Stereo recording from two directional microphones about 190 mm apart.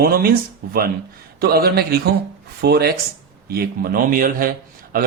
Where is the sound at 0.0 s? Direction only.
50° right (ahead or behind).